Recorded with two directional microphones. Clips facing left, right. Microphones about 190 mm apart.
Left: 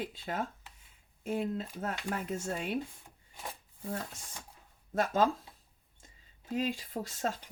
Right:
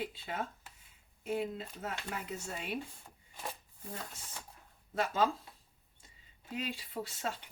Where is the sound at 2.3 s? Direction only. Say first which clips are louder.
Left 6 dB; 45° left (ahead or behind).